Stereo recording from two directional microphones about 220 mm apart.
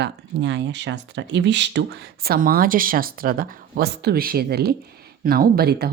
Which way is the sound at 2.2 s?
40° right (ahead or behind).